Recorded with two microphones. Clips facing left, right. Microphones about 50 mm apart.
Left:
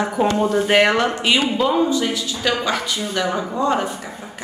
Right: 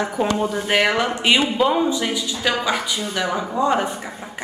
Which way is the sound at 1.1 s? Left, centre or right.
Centre.